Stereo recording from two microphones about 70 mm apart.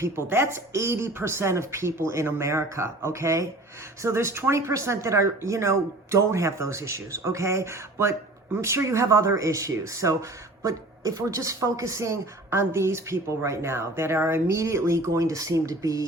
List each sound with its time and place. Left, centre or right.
0.0 s speech: right